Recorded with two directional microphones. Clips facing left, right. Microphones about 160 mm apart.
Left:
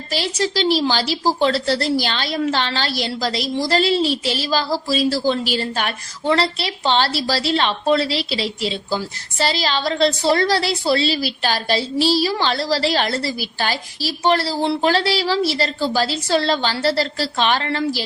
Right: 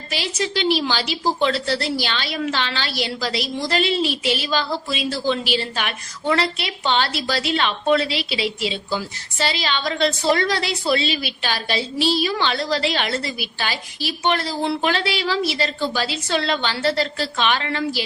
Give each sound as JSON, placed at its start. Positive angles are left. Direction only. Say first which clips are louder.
{"t": 0.1, "sound": "a woman's voice", "louder": "left 3 dB", "side_deg": 35}